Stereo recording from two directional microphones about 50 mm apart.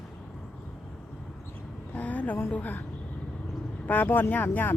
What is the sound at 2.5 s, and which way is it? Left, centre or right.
Speech, left.